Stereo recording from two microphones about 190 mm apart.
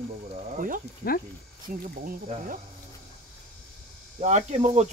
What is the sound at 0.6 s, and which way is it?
Speech, 45° right (ahead or behind).